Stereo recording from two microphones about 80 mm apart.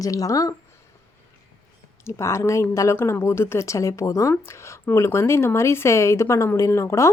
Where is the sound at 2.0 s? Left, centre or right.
Left.